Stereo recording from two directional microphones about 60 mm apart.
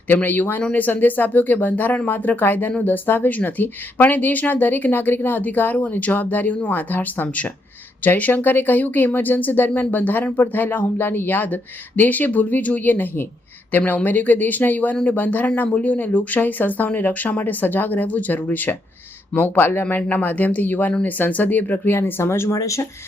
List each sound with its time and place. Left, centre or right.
0.1 s speech: left
22.5 s speech: left